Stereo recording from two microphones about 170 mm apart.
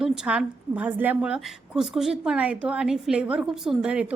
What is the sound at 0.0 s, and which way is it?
A woman's voice, 5° right (ahead or behind).